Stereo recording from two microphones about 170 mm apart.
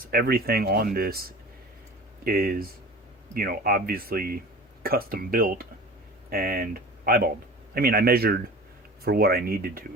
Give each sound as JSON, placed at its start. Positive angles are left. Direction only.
{"t": 0.1, "sound": "a man's voice", "side_deg": -60}